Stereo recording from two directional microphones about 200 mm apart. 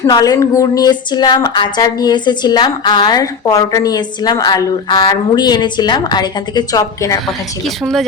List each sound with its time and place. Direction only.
0.0 s speech: 20° left (ahead or behind)